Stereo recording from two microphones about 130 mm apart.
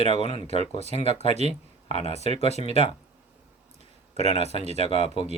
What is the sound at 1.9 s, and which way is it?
Speech, 55° left (ahead or behind).